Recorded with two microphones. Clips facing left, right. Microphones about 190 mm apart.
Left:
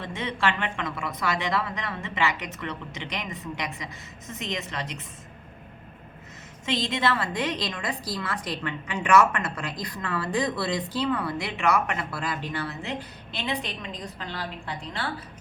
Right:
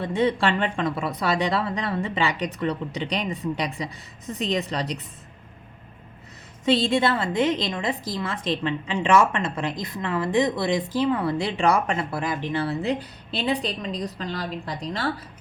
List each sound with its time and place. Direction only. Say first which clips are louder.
0.0 s speech: right 6 dB; 35° right (ahead or behind)
6.7 s a woman's voice: right 6 dB; 30° right (ahead or behind)